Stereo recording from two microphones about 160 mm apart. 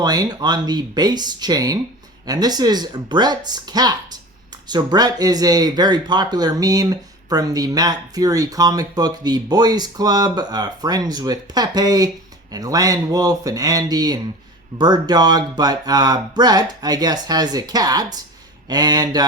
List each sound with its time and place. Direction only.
0.0 s speech: 25° right (ahead or behind)